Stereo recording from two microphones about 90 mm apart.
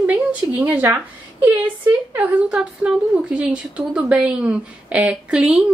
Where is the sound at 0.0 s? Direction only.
20° right (ahead or behind).